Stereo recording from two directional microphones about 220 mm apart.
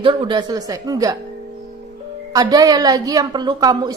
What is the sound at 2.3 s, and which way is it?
A woman's voice, 15° right (ahead or behind).